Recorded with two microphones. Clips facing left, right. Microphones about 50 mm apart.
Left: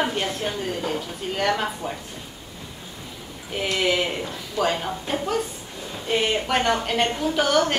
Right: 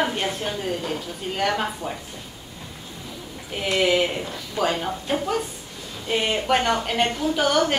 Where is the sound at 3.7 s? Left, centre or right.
Centre.